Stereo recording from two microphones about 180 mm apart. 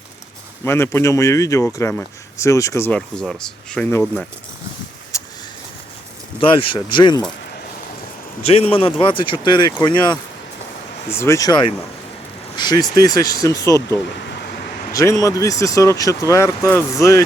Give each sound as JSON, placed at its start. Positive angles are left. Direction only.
{"t": 0.6, "sound": "speech", "side_deg": 15}
{"t": 5.1, "sound": "vehicle", "side_deg": 15}
{"t": 6.4, "sound": "speech", "side_deg": 30}
{"t": 8.5, "sound": "speech", "side_deg": 30}
{"t": 11.2, "sound": "speech", "side_deg": 15}